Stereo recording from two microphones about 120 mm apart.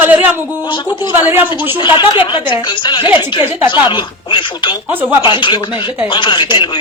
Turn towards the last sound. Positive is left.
turn(degrees=45)  # may be behind; listen again after turning